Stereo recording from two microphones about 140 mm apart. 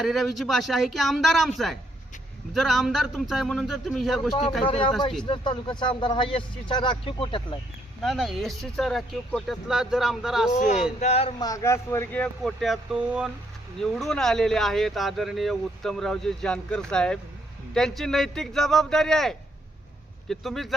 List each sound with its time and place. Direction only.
0.0 s speech: centre (ahead or behind)
4.6 s a man's voice: 40° left (ahead or behind)
8.0 s speech: centre (ahead or behind)
10.5 s speech: 60° left (ahead or behind)
11.0 s speech: 45° left (ahead or behind)
11.3 s speech: 25° left (ahead or behind); by 20.7 s centre (ahead or behind)